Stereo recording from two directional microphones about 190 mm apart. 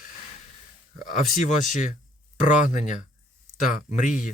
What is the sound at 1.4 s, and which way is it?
Speech, 40° left (ahead or behind).